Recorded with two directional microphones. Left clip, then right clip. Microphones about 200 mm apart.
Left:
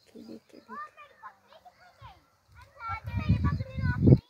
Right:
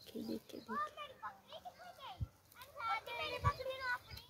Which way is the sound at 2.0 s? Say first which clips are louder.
Even; 55° right (ahead or behind).